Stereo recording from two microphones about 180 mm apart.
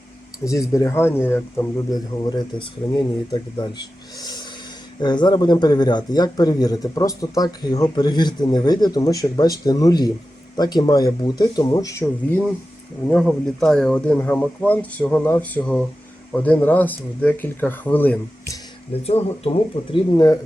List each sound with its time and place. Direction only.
0.4 s speech: 20° left (ahead or behind)
13.1 s speech: 5° left (ahead or behind)
19.0 s speech: 35° left (ahead or behind)
20.1 s speech: 20° left (ahead or behind)